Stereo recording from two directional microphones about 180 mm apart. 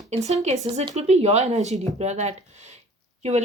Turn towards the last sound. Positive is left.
turn(degrees=-40)  # may be behind; listen again after turning